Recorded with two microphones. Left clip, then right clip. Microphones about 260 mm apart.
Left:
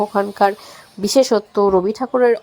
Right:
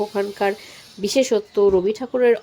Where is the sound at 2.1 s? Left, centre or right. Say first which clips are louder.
Left 2 dB; centre.